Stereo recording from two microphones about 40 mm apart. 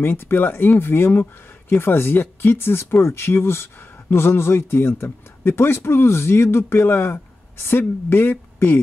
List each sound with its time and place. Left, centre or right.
0.0 s speech: left